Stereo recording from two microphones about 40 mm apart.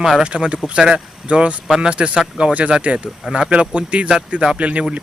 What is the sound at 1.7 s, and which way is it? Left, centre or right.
Speech, right.